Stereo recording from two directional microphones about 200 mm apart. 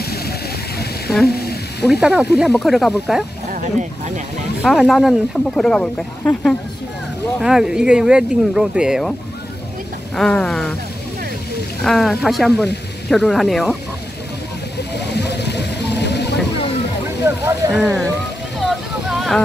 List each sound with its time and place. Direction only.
0.0 s a sound: 50° left (ahead or behind)
1.9 s speech: centre (ahead or behind)
4.6 s speech: centre (ahead or behind)
10.1 s speech: 5° left (ahead or behind)
11.8 s speech: centre (ahead or behind)
14.8 s a sound: 55° left (ahead or behind)
17.2 s vehicle: 15° right (ahead or behind)
17.7 s speech: centre (ahead or behind)
18.6 s vehicle: centre (ahead or behind)